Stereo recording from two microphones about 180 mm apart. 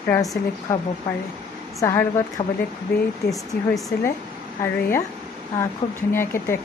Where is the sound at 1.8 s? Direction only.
15° left (ahead or behind).